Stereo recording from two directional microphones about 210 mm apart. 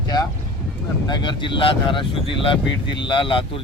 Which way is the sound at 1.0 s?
20° left (ahead or behind).